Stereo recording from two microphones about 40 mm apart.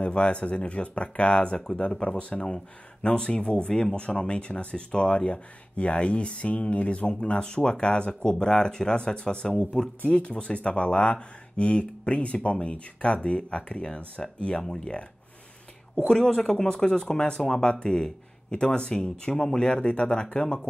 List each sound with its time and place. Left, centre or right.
0.0 s speech: left
2.4 s speech: centre
16.1 s speech: centre